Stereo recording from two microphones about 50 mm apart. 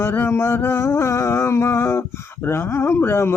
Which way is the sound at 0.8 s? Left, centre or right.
Left.